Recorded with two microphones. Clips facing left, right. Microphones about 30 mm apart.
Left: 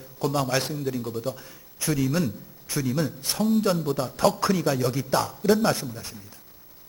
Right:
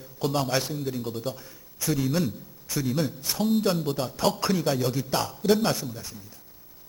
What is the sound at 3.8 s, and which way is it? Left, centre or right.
A man's voice, centre.